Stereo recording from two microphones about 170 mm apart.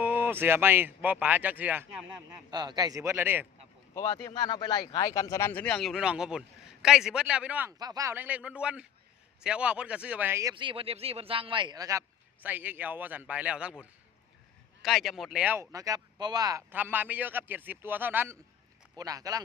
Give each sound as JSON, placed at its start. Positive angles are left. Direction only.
{"t": 0.0, "sound": "speech", "side_deg": -10}
{"t": 2.0, "sound": "a man's voice", "side_deg": -25}
{"t": 3.9, "sound": "speech", "side_deg": 20}
{"t": 7.8, "sound": "speech", "side_deg": -20}
{"t": 10.5, "sound": "speech", "side_deg": -30}
{"t": 16.7, "sound": "a man's voice", "side_deg": -10}